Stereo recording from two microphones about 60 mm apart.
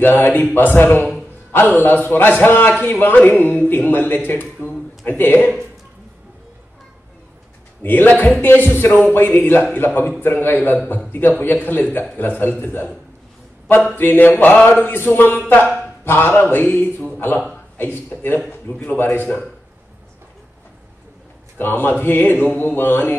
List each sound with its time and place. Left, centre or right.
0.0 s a man's voice: left
1.1 s music: left
1.8 s a man's voice: left
7.8 s a man's voice: left
21.5 s a man's voice: left